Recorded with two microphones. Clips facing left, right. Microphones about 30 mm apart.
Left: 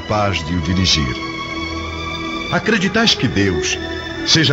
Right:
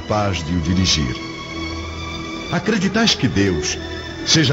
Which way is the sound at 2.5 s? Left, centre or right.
Left.